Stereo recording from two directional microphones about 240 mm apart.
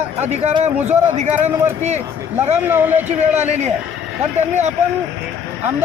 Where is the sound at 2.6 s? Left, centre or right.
Centre.